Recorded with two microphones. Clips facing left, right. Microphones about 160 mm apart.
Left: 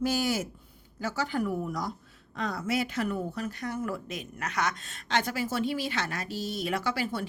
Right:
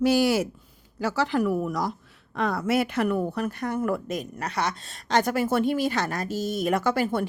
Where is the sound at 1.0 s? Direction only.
85° right.